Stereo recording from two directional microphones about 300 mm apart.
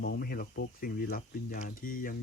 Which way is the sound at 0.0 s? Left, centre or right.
Left.